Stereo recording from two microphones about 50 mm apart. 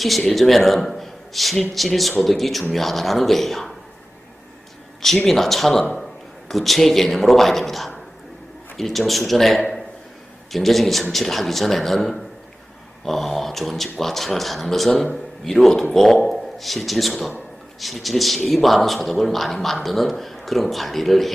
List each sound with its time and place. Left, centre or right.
0.0 s a man's voice: centre
5.0 s a man's voice: centre